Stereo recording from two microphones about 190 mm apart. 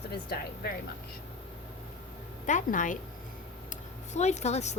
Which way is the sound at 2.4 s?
40° left (ahead or behind).